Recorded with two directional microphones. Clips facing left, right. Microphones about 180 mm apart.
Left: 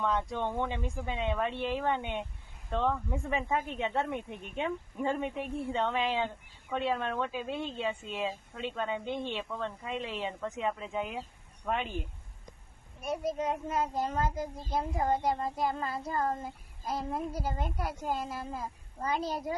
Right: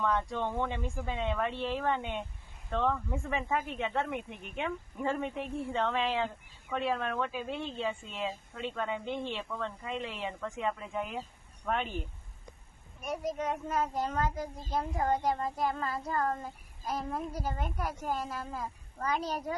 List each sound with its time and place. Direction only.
0.0 s speech: 20° left (ahead or behind)
2.6 s child singing: 15° left (ahead or behind)
5.5 s speech: 15° left (ahead or behind)
7.0 s child singing: 25° left (ahead or behind)
11.6 s speech: 10° left (ahead or behind)
13.0 s child singing: 30° left (ahead or behind)
14.1 s speech: 10° left (ahead or behind)
15.1 s child singing: 25° left (ahead or behind)